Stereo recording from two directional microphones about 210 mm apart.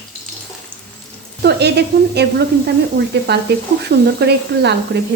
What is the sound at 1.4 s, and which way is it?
Speech, 50° right (ahead or behind).